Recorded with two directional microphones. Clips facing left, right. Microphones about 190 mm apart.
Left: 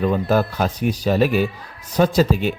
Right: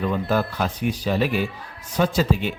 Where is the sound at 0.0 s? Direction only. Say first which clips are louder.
Left 4 dB; 45° left (ahead or behind).